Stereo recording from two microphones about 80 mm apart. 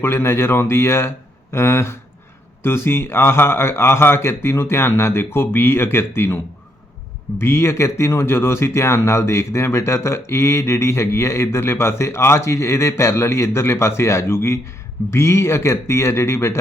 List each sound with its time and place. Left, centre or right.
0.0 s speech: left